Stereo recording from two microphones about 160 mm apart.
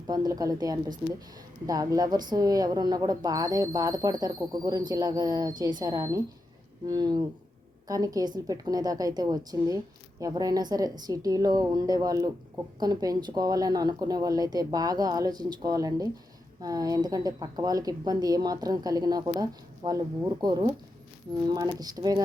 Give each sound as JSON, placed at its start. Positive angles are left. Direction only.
{"t": 0.1, "sound": "a woman's voice", "side_deg": -25}